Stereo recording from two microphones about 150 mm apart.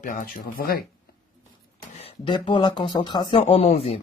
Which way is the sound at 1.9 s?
35° left (ahead or behind).